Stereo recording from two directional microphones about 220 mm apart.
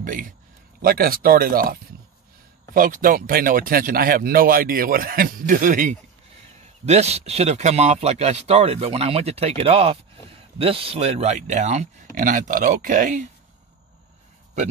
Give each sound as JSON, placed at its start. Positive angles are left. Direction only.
{"t": 0.0, "sound": "a man's voice", "side_deg": -40}